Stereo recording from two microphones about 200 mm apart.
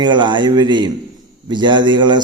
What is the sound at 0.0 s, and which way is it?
A man's voice, 25° right (ahead or behind).